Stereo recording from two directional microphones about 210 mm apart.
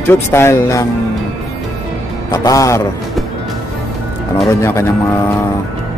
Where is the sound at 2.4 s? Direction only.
15° left (ahead or behind).